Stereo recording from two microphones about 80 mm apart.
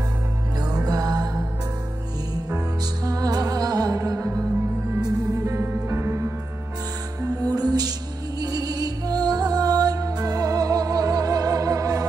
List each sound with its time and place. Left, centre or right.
0.6 s music: right
3.1 s music: right
7.2 s music: right